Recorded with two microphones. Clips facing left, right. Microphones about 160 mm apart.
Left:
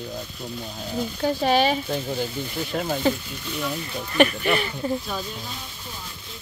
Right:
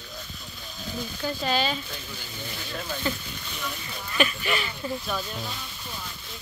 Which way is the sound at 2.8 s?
70° left (ahead or behind).